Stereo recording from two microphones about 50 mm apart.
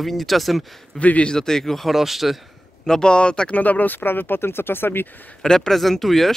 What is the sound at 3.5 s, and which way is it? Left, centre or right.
Speech, left.